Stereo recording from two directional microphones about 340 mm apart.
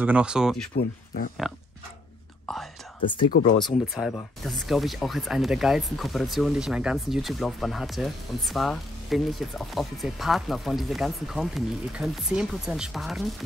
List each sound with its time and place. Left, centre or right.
0.0 s speech: centre
0.7 s speech: left
3.0 s speech: centre
3.3 s speech: left
3.9 s speech: centre